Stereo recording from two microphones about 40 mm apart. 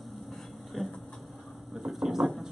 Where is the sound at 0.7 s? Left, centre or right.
Centre.